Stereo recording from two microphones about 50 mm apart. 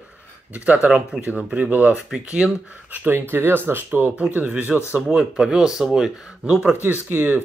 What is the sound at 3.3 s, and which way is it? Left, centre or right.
Speech, right.